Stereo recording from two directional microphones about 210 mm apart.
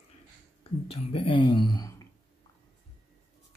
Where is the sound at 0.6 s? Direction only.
25° left (ahead or behind).